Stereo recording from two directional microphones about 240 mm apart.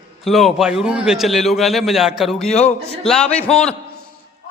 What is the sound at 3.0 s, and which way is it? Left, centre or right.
Speech, centre.